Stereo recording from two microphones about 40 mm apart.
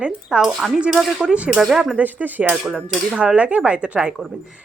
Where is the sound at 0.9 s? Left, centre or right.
Centre.